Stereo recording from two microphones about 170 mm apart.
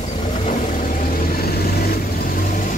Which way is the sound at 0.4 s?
50° left (ahead or behind).